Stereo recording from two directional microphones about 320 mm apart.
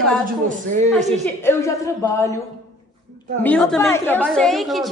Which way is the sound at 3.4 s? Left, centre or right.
Centre.